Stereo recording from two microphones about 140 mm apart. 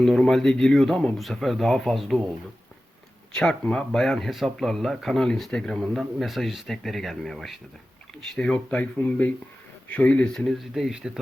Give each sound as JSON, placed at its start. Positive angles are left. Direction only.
{"t": 0.0, "sound": "speech", "side_deg": 5}
{"t": 3.3, "sound": "speech", "side_deg": 5}